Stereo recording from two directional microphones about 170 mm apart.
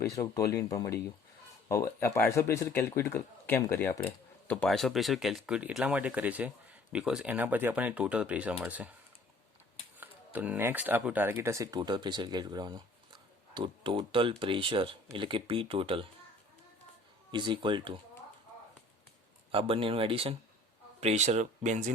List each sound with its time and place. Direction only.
0.0 s speech: 20° left (ahead or behind); by 8.9 s 10° right (ahead or behind)
10.0 s speech: 10° right (ahead or behind); by 16.0 s 30° right (ahead or behind)
17.3 s speech: 25° right (ahead or behind)
19.5 s speech: 30° right (ahead or behind)